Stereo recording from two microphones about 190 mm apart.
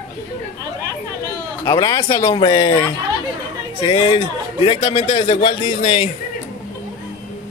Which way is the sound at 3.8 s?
25° left (ahead or behind).